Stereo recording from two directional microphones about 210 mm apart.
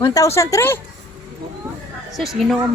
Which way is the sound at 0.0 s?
15° left (ahead or behind).